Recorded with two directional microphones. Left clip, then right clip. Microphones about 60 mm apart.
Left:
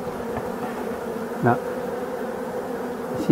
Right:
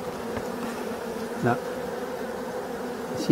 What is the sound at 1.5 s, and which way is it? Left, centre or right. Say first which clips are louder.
Bee: left 5 dB; centre.